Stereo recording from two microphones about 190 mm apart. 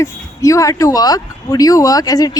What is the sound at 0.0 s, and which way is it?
Speech, 15° left (ahead or behind).